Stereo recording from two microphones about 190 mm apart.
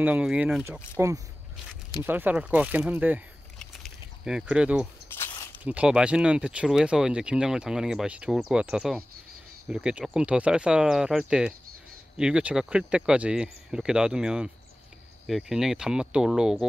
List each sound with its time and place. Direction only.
0.0 s speech: 5° right (ahead or behind)
0.9 s speech: 15° right (ahead or behind)
3.5 s a sound: centre (ahead or behind)
5.1 s biting: 10° left (ahead or behind)
5.6 s speech: 5° right (ahead or behind)